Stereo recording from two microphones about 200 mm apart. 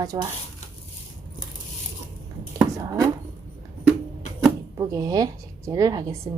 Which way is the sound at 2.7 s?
15° right (ahead or behind).